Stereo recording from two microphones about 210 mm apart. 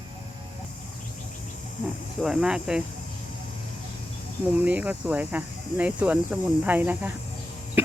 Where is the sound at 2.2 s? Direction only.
5° right (ahead or behind).